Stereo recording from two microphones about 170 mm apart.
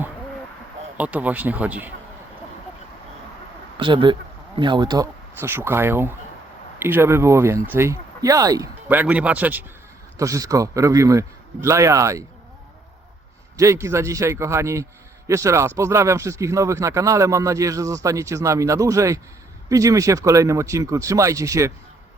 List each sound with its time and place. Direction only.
0.9 s speech: 10° right (ahead or behind)
3.8 s speech: 30° right (ahead or behind)
5.4 s speech: 15° right (ahead or behind)
8.9 s speech: 10° right (ahead or behind)
13.6 s speech: 20° right (ahead or behind)